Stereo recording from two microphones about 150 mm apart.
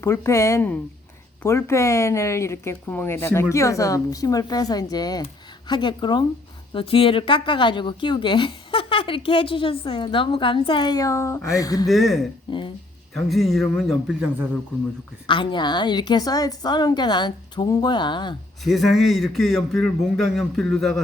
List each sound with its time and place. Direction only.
0.0 s a woman's voice: 20° left (ahead or behind)
11.9 s a man's voice: centre (ahead or behind)
12.5 s speech: 35° left (ahead or behind)
13.1 s a man's voice: centre (ahead or behind)
15.3 s a woman's voice: 35° left (ahead or behind)
18.6 s a man's voice: centre (ahead or behind)